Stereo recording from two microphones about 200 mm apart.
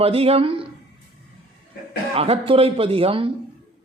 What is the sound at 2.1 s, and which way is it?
A man's voice, 30° right (ahead or behind).